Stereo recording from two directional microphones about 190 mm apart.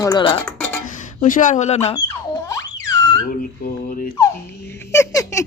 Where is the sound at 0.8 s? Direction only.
40° left (ahead or behind).